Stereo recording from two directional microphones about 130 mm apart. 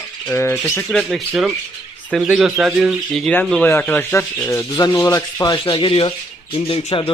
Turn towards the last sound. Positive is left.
turn(degrees=45)  # may be behind; listen again after turning